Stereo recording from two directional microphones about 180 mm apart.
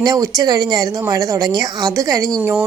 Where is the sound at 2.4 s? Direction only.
10° right (ahead or behind).